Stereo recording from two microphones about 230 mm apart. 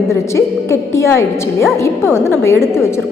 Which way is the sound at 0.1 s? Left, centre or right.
Centre.